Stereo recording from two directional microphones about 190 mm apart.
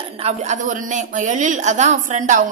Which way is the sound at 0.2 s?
40° right (ahead or behind).